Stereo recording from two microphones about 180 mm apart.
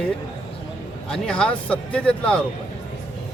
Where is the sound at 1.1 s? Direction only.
5° left (ahead or behind).